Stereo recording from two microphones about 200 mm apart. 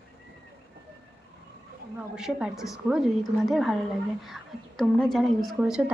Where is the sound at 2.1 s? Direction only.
5° right (ahead or behind).